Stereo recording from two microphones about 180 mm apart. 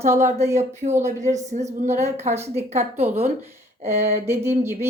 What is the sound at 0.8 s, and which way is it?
Speech, 40° right (ahead or behind).